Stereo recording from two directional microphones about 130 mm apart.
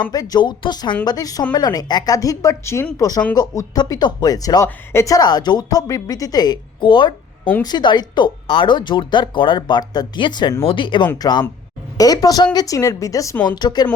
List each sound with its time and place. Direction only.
0.0 s speech: 30° left (ahead or behind)
13.3 s speech: 10° left (ahead or behind)
13.6 s speech: 35° left (ahead or behind)